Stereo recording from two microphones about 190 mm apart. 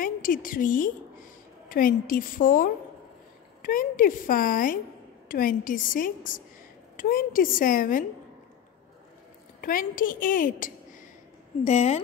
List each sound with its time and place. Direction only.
0.0 s a woman's voice: 45° left (ahead or behind)
9.6 s a woman's voice: 45° left (ahead or behind)
11.6 s a woman's voice: 35° left (ahead or behind)